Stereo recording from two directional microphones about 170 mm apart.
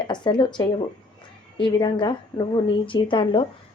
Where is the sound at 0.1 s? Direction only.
25° left (ahead or behind).